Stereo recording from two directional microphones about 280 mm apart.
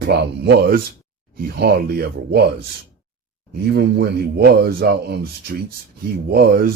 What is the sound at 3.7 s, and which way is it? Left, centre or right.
Speech, right.